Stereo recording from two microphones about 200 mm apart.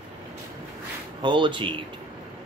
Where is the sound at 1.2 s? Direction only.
25° right (ahead or behind).